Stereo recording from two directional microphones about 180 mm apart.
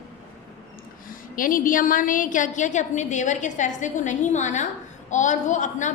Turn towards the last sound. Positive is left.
turn(degrees=40)  # may be behind; listen again after turning